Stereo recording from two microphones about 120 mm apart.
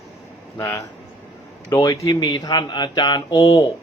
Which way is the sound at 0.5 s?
25° left (ahead or behind).